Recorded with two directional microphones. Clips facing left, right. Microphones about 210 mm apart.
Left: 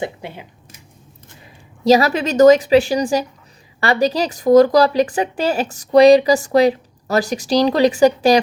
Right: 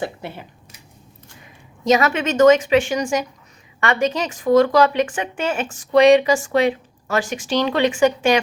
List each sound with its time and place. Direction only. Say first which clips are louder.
0.0 s speech: left 1 dB; 15° left (ahead or behind)
1.8 s speech: left 4 dB; 35° left (ahead or behind)